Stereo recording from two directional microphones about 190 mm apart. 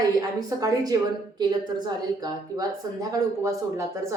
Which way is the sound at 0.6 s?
20° right (ahead or behind).